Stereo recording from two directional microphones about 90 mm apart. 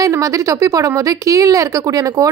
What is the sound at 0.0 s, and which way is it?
A woman's voice, 40° right (ahead or behind).